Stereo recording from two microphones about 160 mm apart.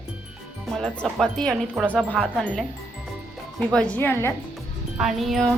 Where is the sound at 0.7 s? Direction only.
5° left (ahead or behind).